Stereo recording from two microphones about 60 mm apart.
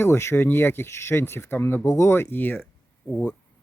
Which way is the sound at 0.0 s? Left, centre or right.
Left.